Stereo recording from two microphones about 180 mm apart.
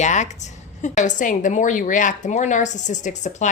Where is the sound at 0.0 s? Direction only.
40° left (ahead or behind).